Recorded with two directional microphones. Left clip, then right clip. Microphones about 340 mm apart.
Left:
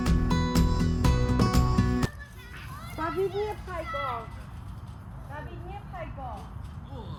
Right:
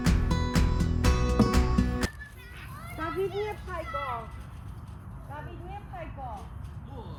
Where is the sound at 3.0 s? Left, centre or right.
Centre.